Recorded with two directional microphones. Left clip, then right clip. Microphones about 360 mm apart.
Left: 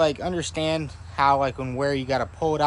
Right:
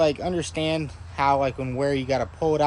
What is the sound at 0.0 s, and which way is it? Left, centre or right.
Speech, centre.